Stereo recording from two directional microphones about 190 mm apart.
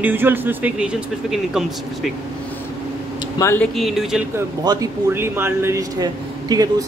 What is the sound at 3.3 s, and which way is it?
Speech, 15° left (ahead or behind).